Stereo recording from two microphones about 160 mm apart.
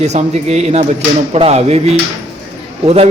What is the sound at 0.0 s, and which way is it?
A man's voice, 45° right (ahead or behind).